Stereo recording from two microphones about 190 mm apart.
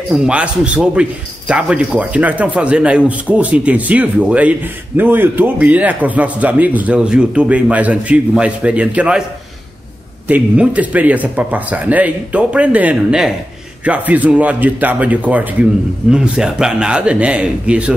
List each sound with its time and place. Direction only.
0.1 s speech: 5° right (ahead or behind)
10.2 s speech: 5° right (ahead or behind)